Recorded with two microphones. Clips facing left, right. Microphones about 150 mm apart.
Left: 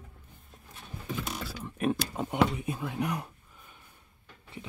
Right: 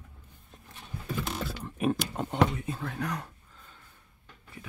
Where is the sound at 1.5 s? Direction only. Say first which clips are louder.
Even; centre (ahead or behind).